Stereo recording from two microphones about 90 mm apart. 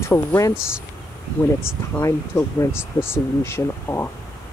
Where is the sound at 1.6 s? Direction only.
30° left (ahead or behind).